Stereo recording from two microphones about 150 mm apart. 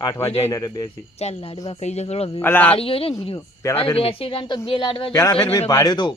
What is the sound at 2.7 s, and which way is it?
Speech, 40° left (ahead or behind).